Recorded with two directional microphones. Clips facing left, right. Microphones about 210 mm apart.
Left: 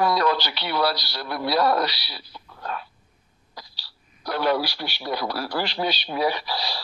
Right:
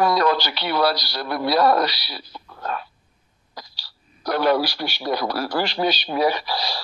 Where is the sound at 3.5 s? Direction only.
45° right (ahead or behind).